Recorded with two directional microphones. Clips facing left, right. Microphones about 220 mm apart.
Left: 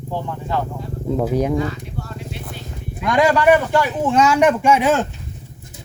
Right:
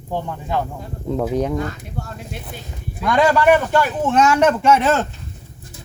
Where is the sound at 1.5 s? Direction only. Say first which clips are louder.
Left 2 dB; 50° right (ahead or behind).